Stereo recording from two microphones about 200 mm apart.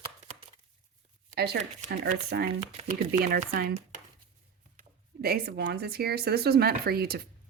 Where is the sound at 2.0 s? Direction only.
55° right (ahead or behind).